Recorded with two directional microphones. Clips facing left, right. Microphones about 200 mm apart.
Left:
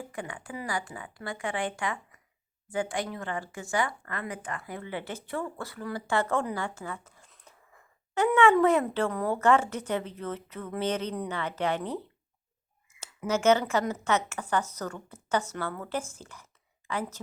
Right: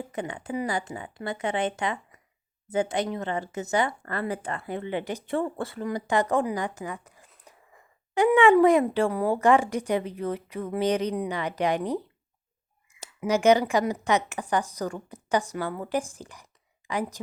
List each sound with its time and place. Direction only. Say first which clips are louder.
0.0 s speech: right 5 dB; 20° right (ahead or behind)
4.0 s speech: right 6 dB; 35° right (ahead or behind); by 17.2 s 15° right (ahead or behind)